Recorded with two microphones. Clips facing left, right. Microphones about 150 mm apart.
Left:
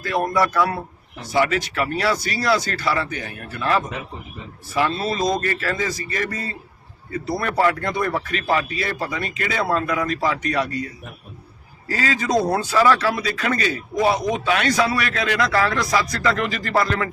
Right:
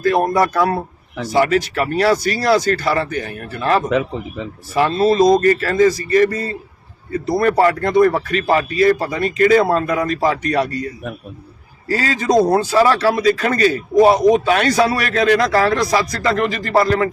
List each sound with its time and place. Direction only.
0.0 s speech: 40° right (ahead or behind)
3.8 s speech: 90° right
4.7 s speech: 40° right (ahead or behind)
11.9 s speech: 35° right (ahead or behind)